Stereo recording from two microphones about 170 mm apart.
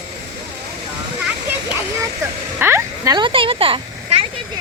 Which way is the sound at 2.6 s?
15° right (ahead or behind).